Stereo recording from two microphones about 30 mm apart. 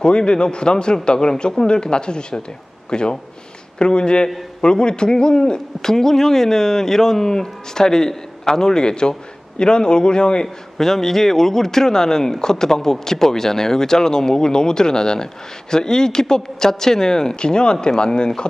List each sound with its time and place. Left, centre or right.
0.0 s a man's voice: left
10.4 s a man's voice: centre